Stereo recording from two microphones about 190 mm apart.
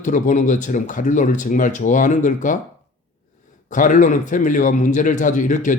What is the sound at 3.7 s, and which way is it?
A man's voice, 40° left (ahead or behind).